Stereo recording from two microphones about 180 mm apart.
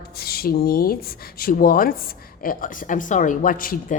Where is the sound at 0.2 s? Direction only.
55° left (ahead or behind).